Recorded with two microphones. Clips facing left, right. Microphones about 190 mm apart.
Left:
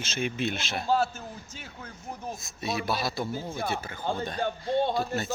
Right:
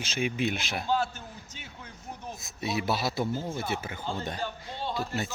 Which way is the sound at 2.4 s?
20° right (ahead or behind).